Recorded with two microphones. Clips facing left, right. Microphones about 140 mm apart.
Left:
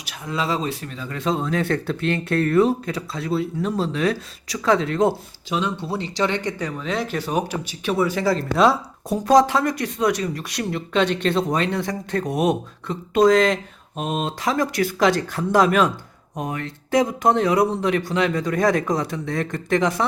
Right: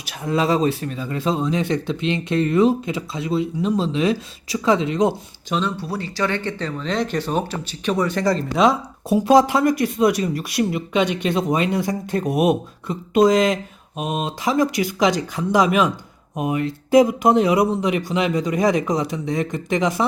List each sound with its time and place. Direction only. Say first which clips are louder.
0.3 s speech: right 6 dB; 40° right (ahead or behind)
0.9 s speech: right 5 dB; 25° right (ahead or behind)
1.2 s speech: right 1 dB; centre (ahead or behind)
1.5 s speech: right 1 dB; 15° right (ahead or behind)
5.5 s speech: right 1 dB; 15° left (ahead or behind); by 20.1 s 5° right (ahead or behind)